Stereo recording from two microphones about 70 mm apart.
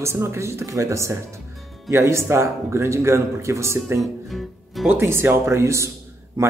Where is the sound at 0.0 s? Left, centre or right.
Right.